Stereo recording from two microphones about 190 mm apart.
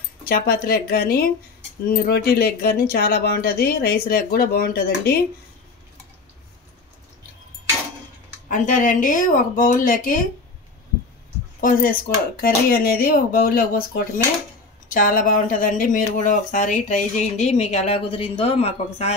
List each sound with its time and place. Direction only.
0.3 s speech: 50° left (ahead or behind)
8.5 s speech: 40° left (ahead or behind)
11.6 s speech: 50° left (ahead or behind); by 19.1 s 30° left (ahead or behind)